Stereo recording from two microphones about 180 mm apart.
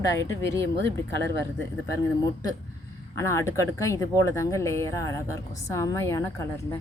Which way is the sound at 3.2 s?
15° left (ahead or behind).